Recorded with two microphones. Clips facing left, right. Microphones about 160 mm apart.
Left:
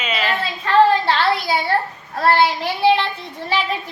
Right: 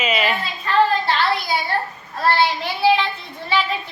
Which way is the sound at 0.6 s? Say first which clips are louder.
Left 4 dB; 75° left (ahead or behind).